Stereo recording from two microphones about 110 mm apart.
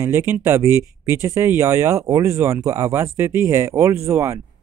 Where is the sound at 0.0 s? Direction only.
25° right (ahead or behind).